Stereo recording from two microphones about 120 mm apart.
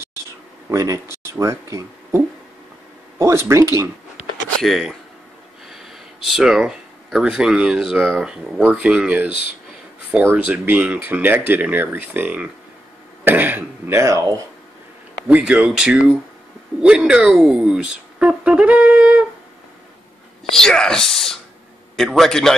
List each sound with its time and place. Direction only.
0.7 s speech: 25° right (ahead or behind)
4.6 s speech: centre (ahead or behind); by 14.4 s 30° right (ahead or behind)
15.2 s speech: 10° right (ahead or behind)
20.5 s speech: 5° left (ahead or behind)